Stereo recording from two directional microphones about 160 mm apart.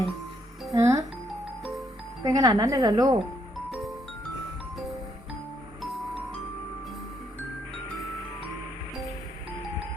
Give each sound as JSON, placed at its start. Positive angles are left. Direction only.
{"t": 0.7, "sound": "music", "side_deg": -20}
{"t": 2.2, "sound": "a woman's voice", "side_deg": -25}
{"t": 5.8, "sound": "music", "side_deg": 0}